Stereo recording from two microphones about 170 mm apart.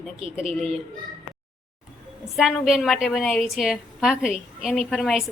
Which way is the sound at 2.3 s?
Centre (ahead or behind).